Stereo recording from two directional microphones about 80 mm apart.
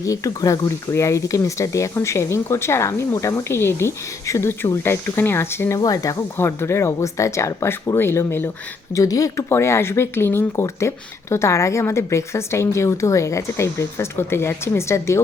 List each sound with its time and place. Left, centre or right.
0.0 s speech: left
5.8 s speech: left
6.3 s speech: left
9.0 s speech: left
9.5 s speech: left